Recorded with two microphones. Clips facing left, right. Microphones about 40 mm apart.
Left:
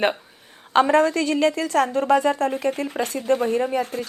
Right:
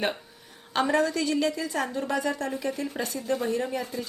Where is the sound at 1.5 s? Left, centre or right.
Left.